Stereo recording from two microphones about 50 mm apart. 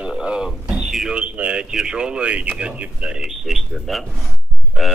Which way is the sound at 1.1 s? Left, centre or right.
Right.